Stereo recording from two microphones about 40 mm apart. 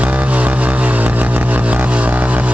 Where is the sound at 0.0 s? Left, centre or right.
Right.